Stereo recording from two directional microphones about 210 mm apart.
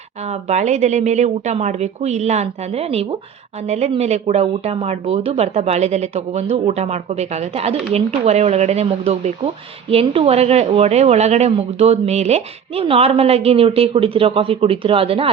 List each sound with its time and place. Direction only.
0.3 s a woman's voice: 30° right (ahead or behind)